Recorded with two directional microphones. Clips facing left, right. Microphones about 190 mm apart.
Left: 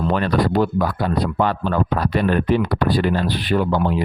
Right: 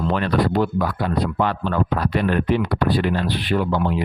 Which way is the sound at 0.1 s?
40° left (ahead or behind).